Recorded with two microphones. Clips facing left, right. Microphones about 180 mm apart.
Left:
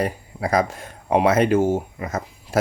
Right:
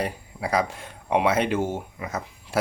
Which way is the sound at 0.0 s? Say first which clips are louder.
Left 4 dB; 45° left (ahead or behind).